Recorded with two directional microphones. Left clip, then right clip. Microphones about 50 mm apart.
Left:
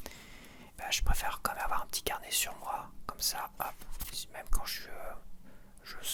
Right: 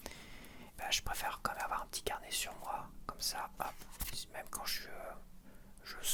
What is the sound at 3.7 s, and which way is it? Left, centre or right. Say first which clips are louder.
Whispering: left 1 dB; centre.